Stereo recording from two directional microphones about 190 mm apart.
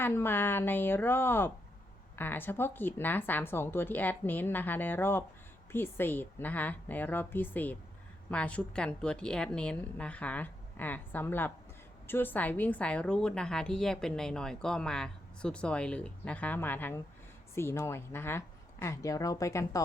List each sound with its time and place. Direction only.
0.0 s a woman's voice: 10° left (ahead or behind)